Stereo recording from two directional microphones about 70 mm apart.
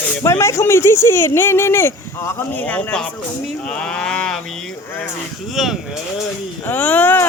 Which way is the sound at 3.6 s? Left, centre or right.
Centre.